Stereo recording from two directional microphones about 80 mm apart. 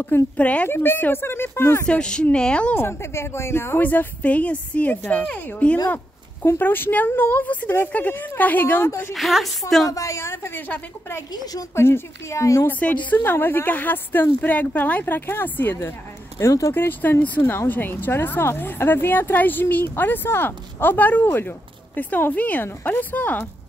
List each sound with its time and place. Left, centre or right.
0.4 s speech: centre
0.7 s speech: left
1.9 s speech: centre
2.7 s a woman's voice: left
9.1 s a woman's voice: centre
9.8 s speech: left
11.3 s speech: left
11.7 s speech: left
12.6 s a woman's voice: centre
16.3 s speech: left
16.7 s a woman's voice: left